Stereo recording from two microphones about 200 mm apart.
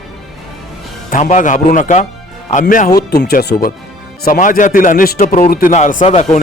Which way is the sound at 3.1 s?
50° left (ahead or behind).